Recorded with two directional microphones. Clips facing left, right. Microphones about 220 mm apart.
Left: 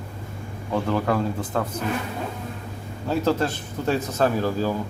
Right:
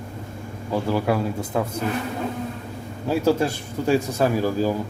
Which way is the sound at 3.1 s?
10° right (ahead or behind).